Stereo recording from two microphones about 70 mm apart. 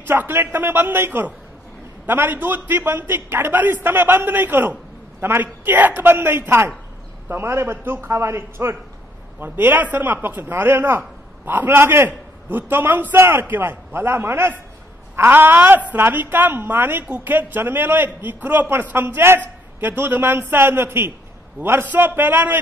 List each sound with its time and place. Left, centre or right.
0.0 s a woman's voice: right